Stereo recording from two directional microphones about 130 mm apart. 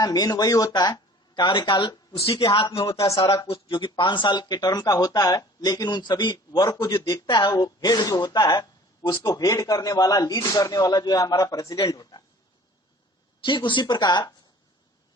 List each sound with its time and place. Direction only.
0.0 s speech: 30° left (ahead or behind)
3.2 s speech: 45° left (ahead or behind)
13.4 s speech: 40° left (ahead or behind)